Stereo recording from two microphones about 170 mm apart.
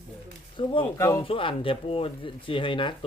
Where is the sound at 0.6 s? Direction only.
30° left (ahead or behind).